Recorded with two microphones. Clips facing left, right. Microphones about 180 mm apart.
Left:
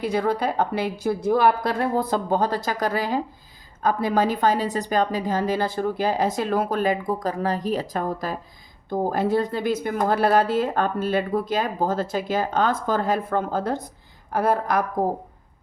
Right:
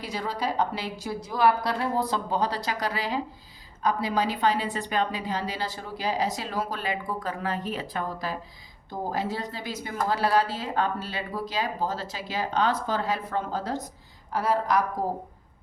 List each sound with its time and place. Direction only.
0.0 s a woman's voice: 55° left (ahead or behind)